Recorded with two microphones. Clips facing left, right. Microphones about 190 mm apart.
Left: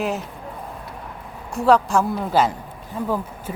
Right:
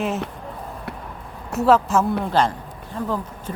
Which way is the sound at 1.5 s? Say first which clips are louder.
Even; centre (ahead or behind).